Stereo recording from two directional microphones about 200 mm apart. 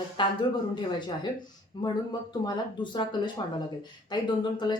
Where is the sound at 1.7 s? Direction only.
20° left (ahead or behind).